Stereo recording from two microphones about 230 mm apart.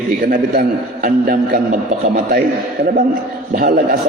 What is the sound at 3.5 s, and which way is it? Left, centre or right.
Speech, right.